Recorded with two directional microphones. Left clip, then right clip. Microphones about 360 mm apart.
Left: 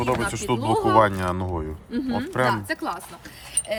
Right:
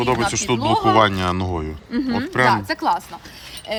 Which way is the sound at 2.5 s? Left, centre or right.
Centre.